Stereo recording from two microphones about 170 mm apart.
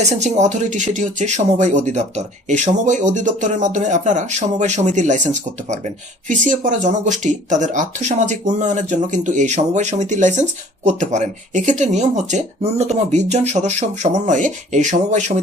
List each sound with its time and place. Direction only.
0.0 s speech: 45° right (ahead or behind)